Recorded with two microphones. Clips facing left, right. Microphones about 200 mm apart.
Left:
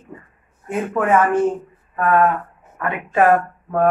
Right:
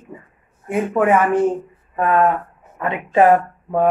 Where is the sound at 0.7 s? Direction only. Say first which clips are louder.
Right 2 dB; 15° right (ahead or behind).